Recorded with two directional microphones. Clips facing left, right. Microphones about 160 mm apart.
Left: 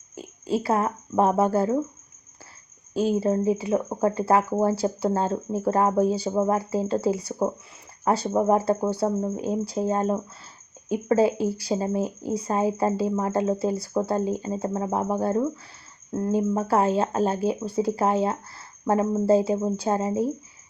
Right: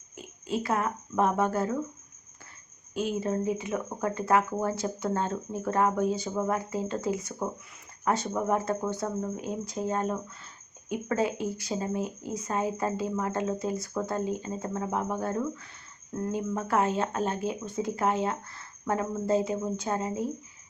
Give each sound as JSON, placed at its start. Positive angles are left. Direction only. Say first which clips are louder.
{"t": 0.2, "sound": "speech", "louder": "left 5 dB", "side_deg": 35}
{"t": 2.9, "sound": "speech", "louder": "left 7 dB", "side_deg": 35}